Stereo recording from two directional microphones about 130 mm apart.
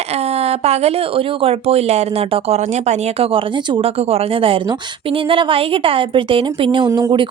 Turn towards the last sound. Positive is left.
turn(degrees=-35)  # may be behind; listen again after turning